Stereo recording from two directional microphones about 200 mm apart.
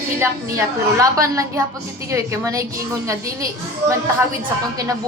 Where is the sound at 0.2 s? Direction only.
15° right (ahead or behind).